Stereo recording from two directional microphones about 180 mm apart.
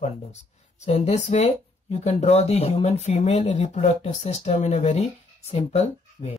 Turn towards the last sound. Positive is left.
turn(degrees=40)  # may be behind; listen again after turning